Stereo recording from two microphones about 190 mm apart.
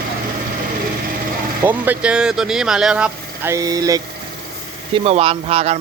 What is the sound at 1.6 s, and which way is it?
Speech, 10° right (ahead or behind).